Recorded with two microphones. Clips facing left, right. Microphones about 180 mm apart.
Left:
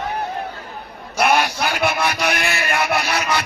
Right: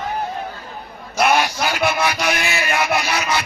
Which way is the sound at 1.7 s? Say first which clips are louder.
Right 1 dB; 55° left (ahead or behind).